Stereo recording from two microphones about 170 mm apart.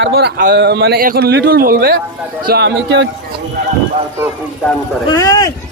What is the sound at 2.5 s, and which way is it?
Speech, 85° right.